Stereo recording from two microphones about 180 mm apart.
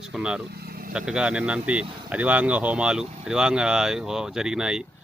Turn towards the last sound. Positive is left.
turn(degrees=-5)  # may be behind; listen again after turning